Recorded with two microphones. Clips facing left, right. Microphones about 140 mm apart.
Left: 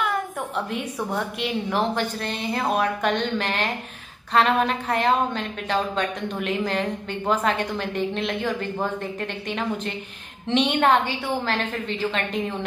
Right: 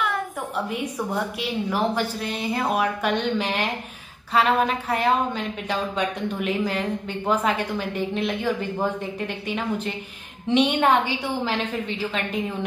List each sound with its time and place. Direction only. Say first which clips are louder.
1.4 s a woman's voice: left 1 dB; 10° right (ahead or behind)